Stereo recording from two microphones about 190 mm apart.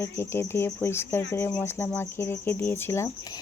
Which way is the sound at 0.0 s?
15° left (ahead or behind).